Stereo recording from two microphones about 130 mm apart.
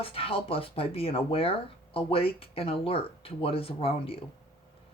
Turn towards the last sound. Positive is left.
turn(degrees=45)  # may be behind; listen again after turning